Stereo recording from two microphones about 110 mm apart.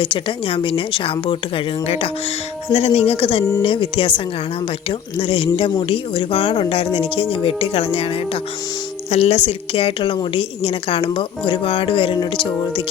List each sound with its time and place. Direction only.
0.0 s speech: 50° left (ahead or behind)
2.7 s a woman's voice: 75° left (ahead or behind)
9.0 s a woman's voice: 70° left (ahead or behind); by 12.8 s 45° left (ahead or behind)